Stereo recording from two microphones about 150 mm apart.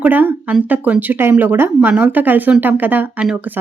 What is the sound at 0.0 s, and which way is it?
A woman's voice, 10° right (ahead or behind).